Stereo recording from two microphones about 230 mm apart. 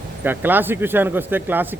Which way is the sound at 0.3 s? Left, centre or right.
Centre.